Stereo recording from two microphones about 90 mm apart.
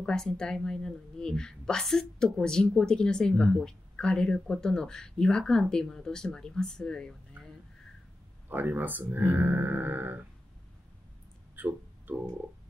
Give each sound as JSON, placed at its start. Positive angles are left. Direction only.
{"t": 0.0, "sound": "speech", "side_deg": 5}
{"t": 8.5, "sound": "speech", "side_deg": -20}
{"t": 11.5, "sound": "a sound", "side_deg": -20}